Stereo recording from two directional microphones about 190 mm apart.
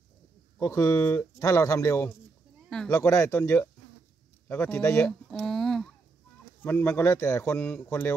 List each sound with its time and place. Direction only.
0.6 s speech: 15° left (ahead or behind)